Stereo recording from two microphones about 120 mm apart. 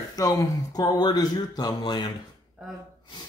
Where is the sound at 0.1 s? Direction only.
30° left (ahead or behind).